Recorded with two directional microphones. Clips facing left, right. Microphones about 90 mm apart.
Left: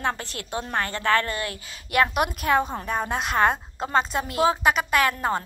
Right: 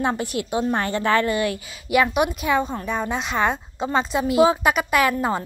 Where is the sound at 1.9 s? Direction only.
5° right (ahead or behind).